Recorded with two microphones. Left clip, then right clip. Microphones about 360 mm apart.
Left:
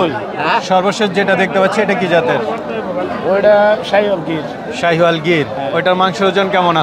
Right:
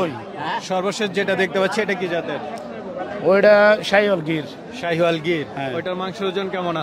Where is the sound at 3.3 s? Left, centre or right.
Right.